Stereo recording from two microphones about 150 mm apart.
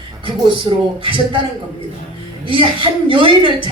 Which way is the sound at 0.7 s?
25° right (ahead or behind).